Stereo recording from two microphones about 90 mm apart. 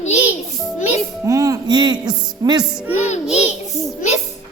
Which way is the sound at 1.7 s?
50° right (ahead or behind).